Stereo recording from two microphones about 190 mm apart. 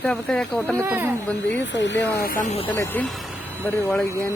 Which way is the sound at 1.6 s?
70° left (ahead or behind).